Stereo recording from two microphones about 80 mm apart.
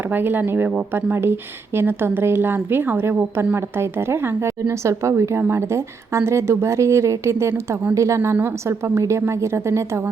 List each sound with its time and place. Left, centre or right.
0.1 s a woman's voice: right